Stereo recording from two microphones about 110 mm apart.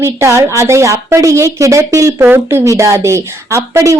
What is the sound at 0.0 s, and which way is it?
A woman's voice, 25° right (ahead or behind).